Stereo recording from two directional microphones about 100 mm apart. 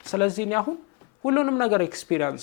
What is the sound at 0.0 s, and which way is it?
A man's voice, 15° left (ahead or behind).